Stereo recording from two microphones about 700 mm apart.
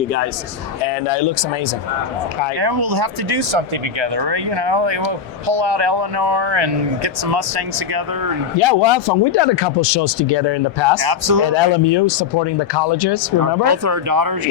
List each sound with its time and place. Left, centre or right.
2.6 s speech: right
8.5 s speech: left
11.0 s speech: right
11.5 s speech: left
13.4 s speech: right